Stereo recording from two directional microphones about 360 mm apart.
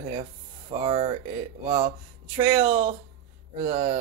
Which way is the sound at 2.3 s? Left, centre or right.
Centre.